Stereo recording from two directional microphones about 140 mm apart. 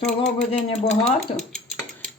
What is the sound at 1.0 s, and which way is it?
Speech, 5° left (ahead or behind).